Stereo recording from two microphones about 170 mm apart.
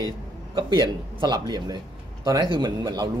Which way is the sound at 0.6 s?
25° right (ahead or behind).